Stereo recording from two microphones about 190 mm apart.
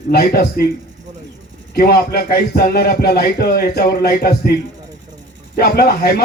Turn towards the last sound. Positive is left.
turn(degrees=55)  # may be behind; listen again after turning